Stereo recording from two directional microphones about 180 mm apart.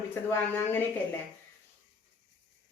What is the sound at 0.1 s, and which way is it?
Speech, 10° left (ahead or behind).